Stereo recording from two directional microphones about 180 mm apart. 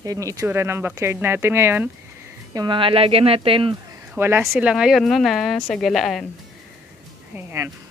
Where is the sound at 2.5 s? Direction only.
25° right (ahead or behind).